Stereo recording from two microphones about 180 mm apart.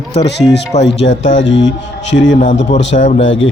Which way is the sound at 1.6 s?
90° left.